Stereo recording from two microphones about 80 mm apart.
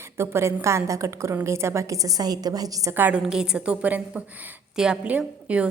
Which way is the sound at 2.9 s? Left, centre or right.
Right.